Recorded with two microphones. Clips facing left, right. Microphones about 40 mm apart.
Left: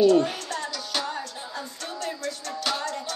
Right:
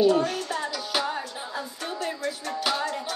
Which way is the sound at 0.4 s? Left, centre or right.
Centre.